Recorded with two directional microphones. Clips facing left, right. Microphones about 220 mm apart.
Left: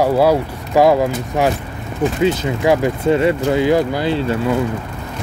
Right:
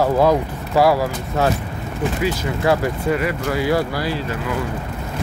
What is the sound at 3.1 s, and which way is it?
Speech, 25° left (ahead or behind).